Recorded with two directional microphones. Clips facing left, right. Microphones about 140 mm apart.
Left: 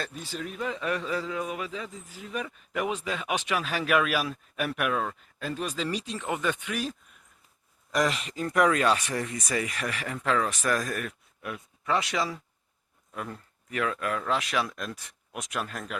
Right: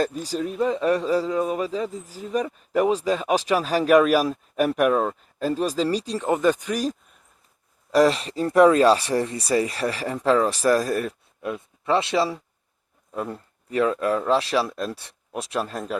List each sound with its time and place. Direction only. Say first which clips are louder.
0.0 s a man's voice: right 11 dB; 40° right (ahead or behind)